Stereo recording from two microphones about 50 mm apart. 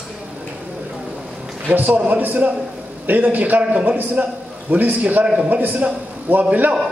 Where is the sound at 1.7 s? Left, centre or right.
Right.